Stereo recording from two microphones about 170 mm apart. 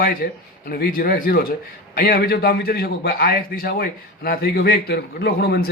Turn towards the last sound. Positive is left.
turn(degrees=70)  # may be behind; listen again after turning